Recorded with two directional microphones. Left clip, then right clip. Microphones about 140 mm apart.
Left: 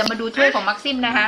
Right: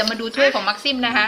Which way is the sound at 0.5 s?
20° right (ahead or behind).